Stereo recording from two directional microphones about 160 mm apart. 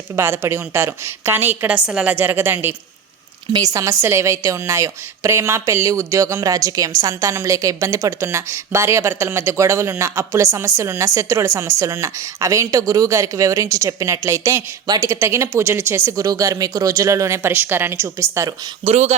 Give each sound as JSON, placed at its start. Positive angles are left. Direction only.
{"t": 0.2, "sound": "a woman's voice", "side_deg": -15}
{"t": 18.9, "sound": "speech", "side_deg": -45}